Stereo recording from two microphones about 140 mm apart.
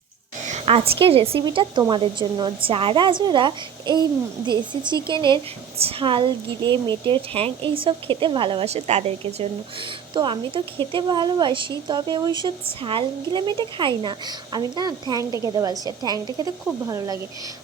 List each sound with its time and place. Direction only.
0.4 s a woman's voice: 50° right (ahead or behind)
10.2 s a woman's voice: 35° right (ahead or behind)